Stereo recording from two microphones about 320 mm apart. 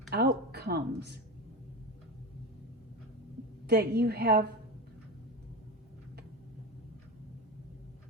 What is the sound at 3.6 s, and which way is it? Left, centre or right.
Speech, right.